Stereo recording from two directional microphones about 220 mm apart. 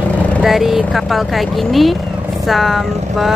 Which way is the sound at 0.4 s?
Centre (ahead or behind).